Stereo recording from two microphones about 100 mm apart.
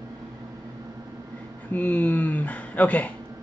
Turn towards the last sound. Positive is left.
turn(degrees=15)  # may be behind; listen again after turning